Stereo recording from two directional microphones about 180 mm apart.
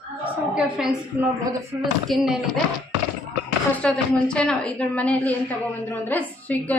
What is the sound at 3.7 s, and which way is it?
A woman's voice, 5° left (ahead or behind).